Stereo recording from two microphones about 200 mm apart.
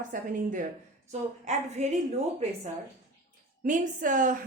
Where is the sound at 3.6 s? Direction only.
40° right (ahead or behind).